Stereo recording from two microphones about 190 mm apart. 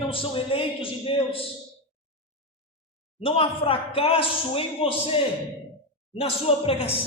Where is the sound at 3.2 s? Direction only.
30° left (ahead or behind).